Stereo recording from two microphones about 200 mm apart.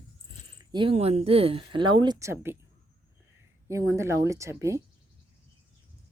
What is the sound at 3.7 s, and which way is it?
Speech, 15° right (ahead or behind).